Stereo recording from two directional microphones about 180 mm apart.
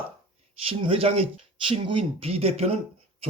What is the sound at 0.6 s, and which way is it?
A man's voice, 30° right (ahead or behind).